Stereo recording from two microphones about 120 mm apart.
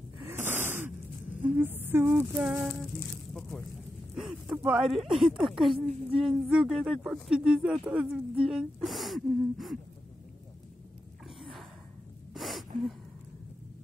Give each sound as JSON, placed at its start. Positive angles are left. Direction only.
{"t": 0.2, "sound": "snort", "side_deg": -20}
{"t": 1.6, "sound": "a sound", "side_deg": -15}
{"t": 2.6, "sound": "speech", "side_deg": 0}
{"t": 12.4, "sound": "gasp", "side_deg": 0}